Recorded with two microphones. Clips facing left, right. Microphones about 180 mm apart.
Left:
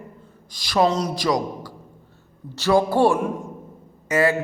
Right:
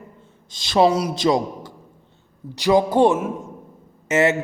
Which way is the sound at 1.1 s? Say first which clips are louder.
Right 3 dB; 25° right (ahead or behind).